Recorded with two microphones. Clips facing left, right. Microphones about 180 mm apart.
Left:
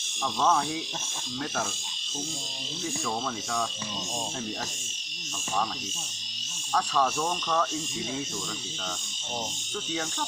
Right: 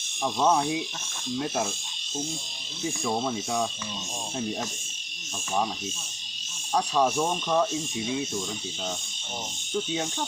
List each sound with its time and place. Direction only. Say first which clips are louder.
0.2 s speech: right 2 dB; 20° right (ahead or behind)
3.0 s speech: right 6 dB; 20° right (ahead or behind)
6.7 s speech: right 3 dB; 20° right (ahead or behind)
9.7 s speech: right 5 dB; 20° right (ahead or behind)